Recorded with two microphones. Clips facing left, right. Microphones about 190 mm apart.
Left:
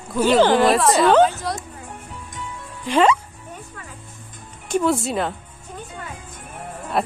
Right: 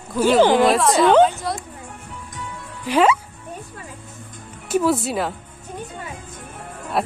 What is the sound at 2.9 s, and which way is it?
Speech, 10° right (ahead or behind).